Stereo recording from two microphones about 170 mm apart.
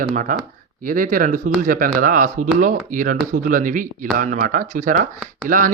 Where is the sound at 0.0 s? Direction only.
50° right (ahead or behind).